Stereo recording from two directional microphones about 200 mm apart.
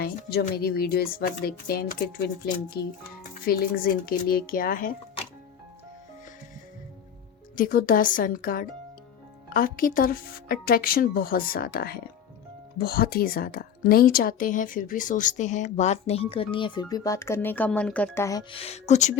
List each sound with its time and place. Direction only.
0.0 s speech: 50° left (ahead or behind)
3.4 s speech: 45° left (ahead or behind)
7.5 s a woman's voice: 45° left (ahead or behind); by 18.4 s 15° left (ahead or behind)
18.5 s a woman's voice: 30° left (ahead or behind)